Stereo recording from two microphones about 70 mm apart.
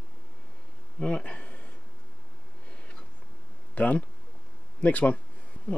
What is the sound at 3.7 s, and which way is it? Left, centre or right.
Speech, left.